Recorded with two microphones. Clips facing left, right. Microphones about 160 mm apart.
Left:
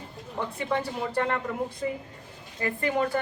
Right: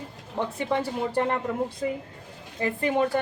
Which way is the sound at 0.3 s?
20° right (ahead or behind).